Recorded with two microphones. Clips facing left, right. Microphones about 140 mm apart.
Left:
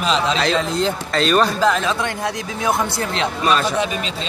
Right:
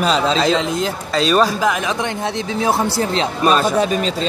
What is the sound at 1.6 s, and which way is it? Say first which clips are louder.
Speech: left 1 dB; 15° right (ahead or behind).